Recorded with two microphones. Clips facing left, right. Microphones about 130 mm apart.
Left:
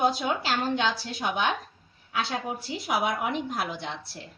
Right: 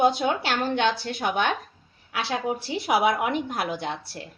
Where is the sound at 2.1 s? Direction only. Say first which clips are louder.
Right 3 dB; 80° right; by 3.9 s 65° right (ahead or behind).